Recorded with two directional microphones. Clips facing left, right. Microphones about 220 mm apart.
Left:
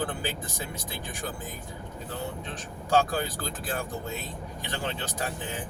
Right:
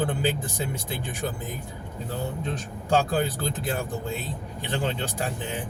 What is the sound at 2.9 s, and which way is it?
Speech, 25° right (ahead or behind).